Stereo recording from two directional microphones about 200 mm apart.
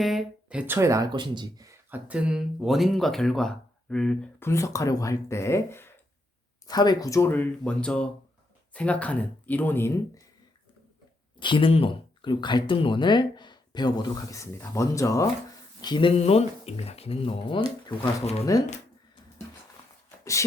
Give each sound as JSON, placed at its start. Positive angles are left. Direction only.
{"t": 0.0, "sound": "speech", "side_deg": 0}
{"t": 11.3, "sound": "speech", "side_deg": 25}
{"t": 20.1, "sound": "a sound", "side_deg": 15}